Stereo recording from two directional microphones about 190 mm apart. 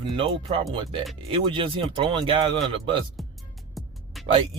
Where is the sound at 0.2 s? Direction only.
30° right (ahead or behind).